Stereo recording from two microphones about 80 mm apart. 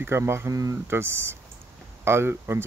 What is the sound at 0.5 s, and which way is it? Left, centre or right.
Speech, right.